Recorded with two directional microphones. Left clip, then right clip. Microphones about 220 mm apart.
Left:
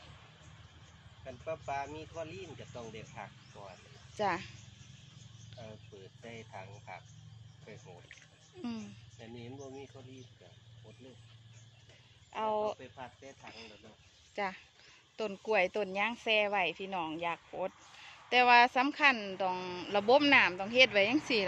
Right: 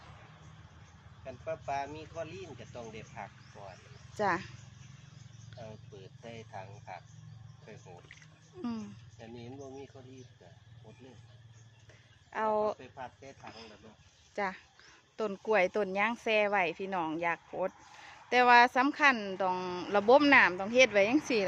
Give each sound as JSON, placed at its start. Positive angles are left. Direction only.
{"t": 1.2, "sound": "speech", "side_deg": -5}
{"t": 6.2, "sound": "speech", "side_deg": -5}
{"t": 8.6, "sound": "speech", "side_deg": -10}
{"t": 12.3, "sound": "speech", "side_deg": -15}
{"t": 12.8, "sound": "speech", "side_deg": 0}
{"t": 13.5, "sound": "speech", "side_deg": -10}